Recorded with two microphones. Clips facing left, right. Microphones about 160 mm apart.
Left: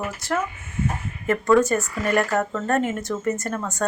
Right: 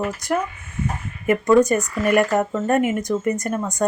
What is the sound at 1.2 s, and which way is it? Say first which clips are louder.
Speech: right 3 dB; 20° right (ahead or behind).